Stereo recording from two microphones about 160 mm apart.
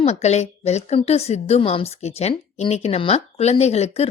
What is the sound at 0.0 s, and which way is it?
A woman's voice, 45° left (ahead or behind).